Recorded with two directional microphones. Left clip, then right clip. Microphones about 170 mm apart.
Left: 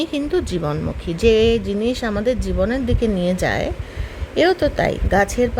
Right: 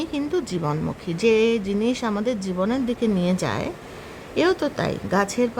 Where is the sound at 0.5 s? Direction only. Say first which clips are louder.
Left 3 dB; 15° left (ahead or behind).